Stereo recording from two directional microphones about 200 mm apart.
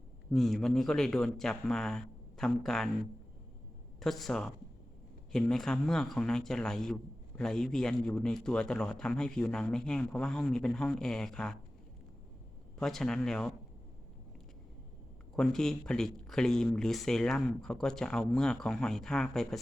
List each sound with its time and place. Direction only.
0.3 s a man's voice: centre (ahead or behind)
4.0 s a man's voice: centre (ahead or behind)
12.8 s a man's voice: centre (ahead or behind)
15.4 s a man's voice: 5° left (ahead or behind)